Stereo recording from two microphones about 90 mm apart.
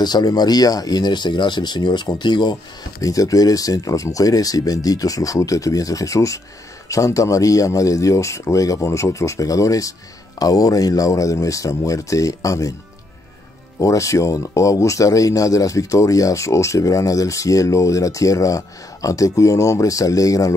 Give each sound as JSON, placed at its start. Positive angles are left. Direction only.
{"t": 0.0, "sound": "speech", "side_deg": 50}
{"t": 3.0, "sound": "speech", "side_deg": 40}
{"t": 13.7, "sound": "speech", "side_deg": 35}